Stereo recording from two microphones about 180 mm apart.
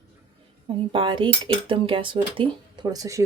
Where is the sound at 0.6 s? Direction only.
25° right (ahead or behind).